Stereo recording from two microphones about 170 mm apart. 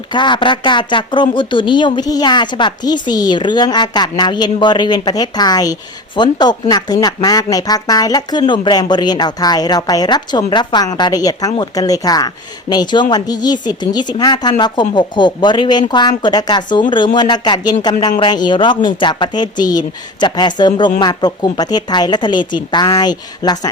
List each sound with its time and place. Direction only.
0.1 s speech: 25° left (ahead or behind)